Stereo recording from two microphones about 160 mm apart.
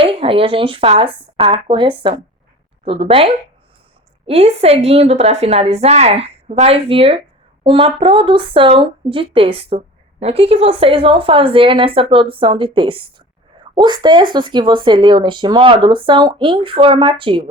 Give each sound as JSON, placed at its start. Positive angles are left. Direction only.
{"t": 0.0, "sound": "speech", "side_deg": -35}